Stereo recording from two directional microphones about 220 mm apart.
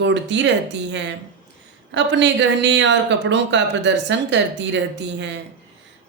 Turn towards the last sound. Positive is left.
turn(degrees=-55)  # may be behind; listen again after turning